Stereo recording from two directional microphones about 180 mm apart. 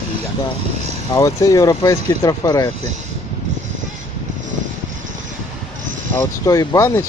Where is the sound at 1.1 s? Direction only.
20° left (ahead or behind).